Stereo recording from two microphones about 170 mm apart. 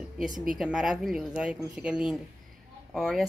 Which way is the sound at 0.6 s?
5° right (ahead or behind).